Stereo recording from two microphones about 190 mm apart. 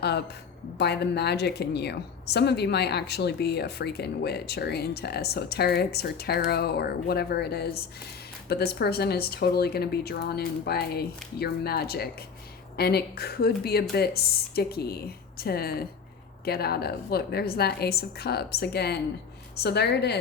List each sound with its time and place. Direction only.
0.0 s a woman's voice: 60° left (ahead or behind)